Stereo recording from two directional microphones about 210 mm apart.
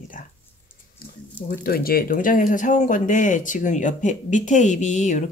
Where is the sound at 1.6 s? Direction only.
45° left (ahead or behind).